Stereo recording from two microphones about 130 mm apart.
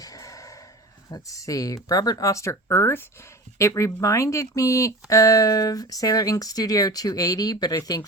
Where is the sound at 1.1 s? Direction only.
25° left (ahead or behind).